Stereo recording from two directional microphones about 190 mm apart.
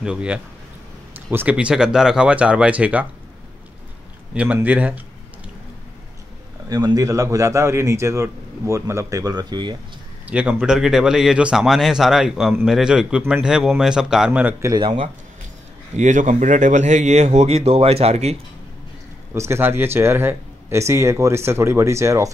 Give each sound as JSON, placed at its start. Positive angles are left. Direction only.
{"t": 0.0, "sound": "a man's voice", "side_deg": -5}
{"t": 4.3, "sound": "a man's voice", "side_deg": -5}
{"t": 6.7, "sound": "a man's voice", "side_deg": -20}
{"t": 10.2, "sound": "a man's voice", "side_deg": -5}
{"t": 16.0, "sound": "speech", "side_deg": -40}
{"t": 19.3, "sound": "a man's voice", "side_deg": -15}